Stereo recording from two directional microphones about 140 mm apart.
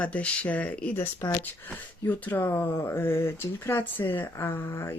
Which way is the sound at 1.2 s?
25° left (ahead or behind).